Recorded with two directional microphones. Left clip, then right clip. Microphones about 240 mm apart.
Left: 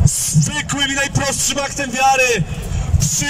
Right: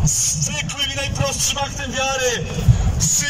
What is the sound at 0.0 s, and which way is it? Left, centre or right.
A man's voice, left.